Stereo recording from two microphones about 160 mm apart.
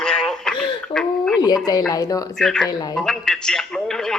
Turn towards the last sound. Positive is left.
turn(degrees=5)  # may be behind; listen again after turning